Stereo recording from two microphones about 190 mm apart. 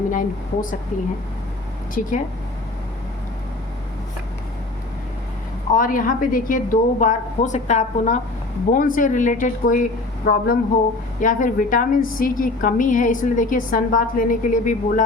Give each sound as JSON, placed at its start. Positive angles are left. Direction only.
{"t": 0.1, "sound": "a woman's voice", "side_deg": 45}
{"t": 2.0, "sound": "a woman's voice", "side_deg": 45}
{"t": 5.7, "sound": "a woman's voice", "side_deg": 45}